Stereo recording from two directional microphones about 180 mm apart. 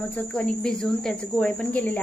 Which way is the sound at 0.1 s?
5° left (ahead or behind).